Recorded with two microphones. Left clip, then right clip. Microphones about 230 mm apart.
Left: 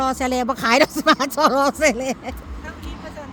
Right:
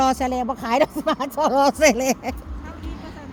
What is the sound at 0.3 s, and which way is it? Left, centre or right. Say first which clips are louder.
Speech: left 4 dB; centre.